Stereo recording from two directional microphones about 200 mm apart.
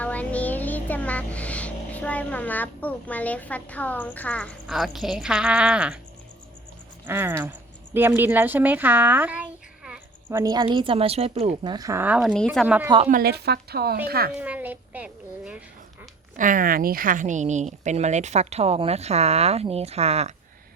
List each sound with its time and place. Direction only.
0.0 s music: 5° left (ahead or behind)
4.6 s speech: centre (ahead or behind)
7.0 s speech: 10° right (ahead or behind)
13.1 s speech: 50° right (ahead or behind)
14.3 s a child's voice: 10° right (ahead or behind)
16.4 s a woman's voice: 45° right (ahead or behind)